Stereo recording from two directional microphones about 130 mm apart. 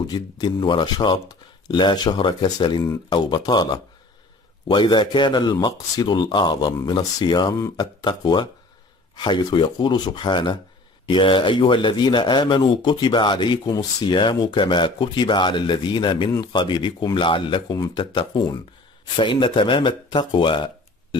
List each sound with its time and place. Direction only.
0.0 s speech: 35° left (ahead or behind)